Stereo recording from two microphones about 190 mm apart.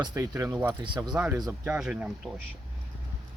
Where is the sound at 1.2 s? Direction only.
5° right (ahead or behind).